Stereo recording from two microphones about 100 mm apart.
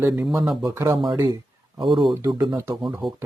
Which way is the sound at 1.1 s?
40° right (ahead or behind).